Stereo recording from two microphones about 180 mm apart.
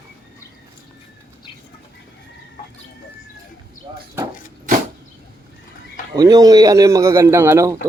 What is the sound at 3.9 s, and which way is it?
Chop, 30° right (ahead or behind).